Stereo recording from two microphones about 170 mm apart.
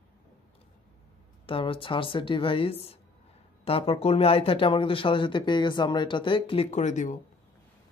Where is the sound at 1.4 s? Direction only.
30° left (ahead or behind).